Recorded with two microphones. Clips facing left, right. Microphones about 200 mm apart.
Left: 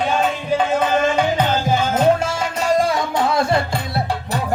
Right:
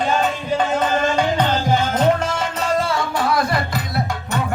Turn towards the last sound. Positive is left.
turn(degrees=25)  # may be behind; listen again after turning